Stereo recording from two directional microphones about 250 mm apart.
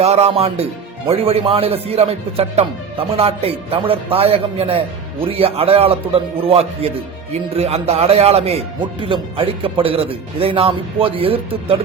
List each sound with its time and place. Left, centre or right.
0.0 s speech: right